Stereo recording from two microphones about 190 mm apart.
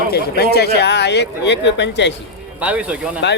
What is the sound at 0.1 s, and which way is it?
Speech, 55° left (ahead or behind).